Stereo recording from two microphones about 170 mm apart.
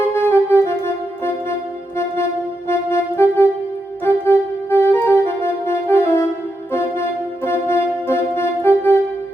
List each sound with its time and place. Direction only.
0.3 s music: 15° left (ahead or behind)
2.6 s music: 15° left (ahead or behind)